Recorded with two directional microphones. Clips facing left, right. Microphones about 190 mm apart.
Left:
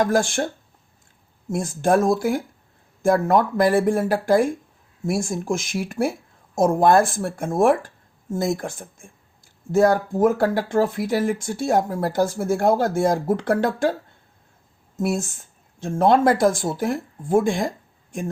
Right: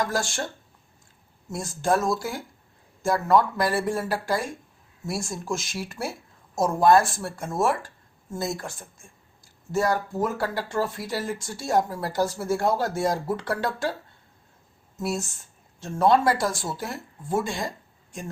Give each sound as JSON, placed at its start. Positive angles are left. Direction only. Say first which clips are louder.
{"t": 0.0, "sound": "speech", "louder": "left 7 dB", "side_deg": 55}
{"t": 1.5, "sound": "speech", "louder": "left 5 dB", "side_deg": 55}
{"t": 14.9, "sound": "speech", "louder": "left 5 dB", "side_deg": 50}